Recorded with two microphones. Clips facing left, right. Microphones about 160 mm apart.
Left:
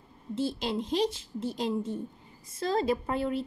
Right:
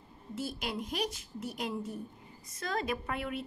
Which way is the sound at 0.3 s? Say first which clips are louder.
Left 7 dB; 25° left (ahead or behind).